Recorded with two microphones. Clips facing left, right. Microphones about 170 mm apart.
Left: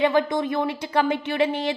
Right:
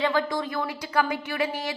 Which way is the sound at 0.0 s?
20° left (ahead or behind).